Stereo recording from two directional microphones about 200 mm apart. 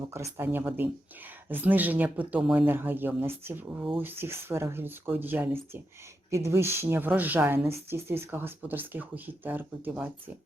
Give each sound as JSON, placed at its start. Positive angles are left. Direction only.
{"t": 0.0, "sound": "speech", "side_deg": -15}